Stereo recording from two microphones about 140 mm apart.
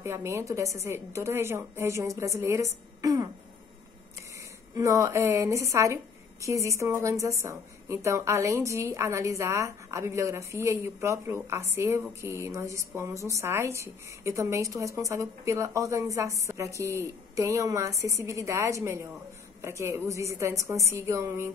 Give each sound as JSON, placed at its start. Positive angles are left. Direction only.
{"t": 0.0, "sound": "a woman's voice", "side_deg": -20}
{"t": 4.7, "sound": "a woman's voice", "side_deg": -25}